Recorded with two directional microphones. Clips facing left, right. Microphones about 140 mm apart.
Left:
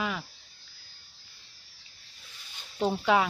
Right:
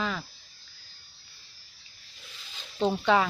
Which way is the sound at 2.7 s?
5° left (ahead or behind).